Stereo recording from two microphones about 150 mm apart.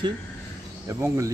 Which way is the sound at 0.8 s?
20° right (ahead or behind).